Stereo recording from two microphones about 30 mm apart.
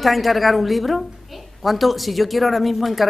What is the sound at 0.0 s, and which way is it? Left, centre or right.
Speech, centre.